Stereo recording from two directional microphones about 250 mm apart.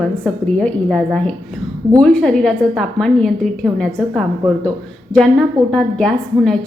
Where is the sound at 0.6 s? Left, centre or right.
Centre.